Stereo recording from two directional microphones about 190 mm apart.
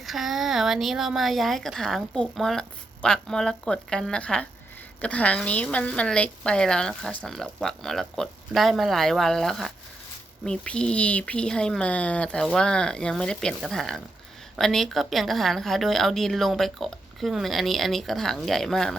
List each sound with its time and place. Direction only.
0.0 s a woman's voice: centre (ahead or behind)